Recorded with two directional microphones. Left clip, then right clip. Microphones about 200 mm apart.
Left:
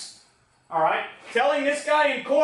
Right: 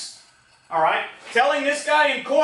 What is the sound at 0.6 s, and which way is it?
Speech, 15° left (ahead or behind).